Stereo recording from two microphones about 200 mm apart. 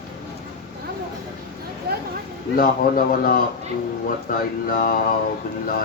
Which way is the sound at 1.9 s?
50° right (ahead or behind).